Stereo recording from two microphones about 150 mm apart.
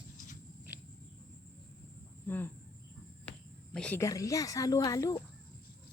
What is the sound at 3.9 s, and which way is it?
Speech, 20° left (ahead or behind).